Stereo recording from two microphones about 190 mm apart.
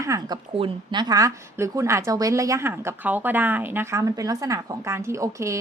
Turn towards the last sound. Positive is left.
turn(degrees=-15)  # may be behind; listen again after turning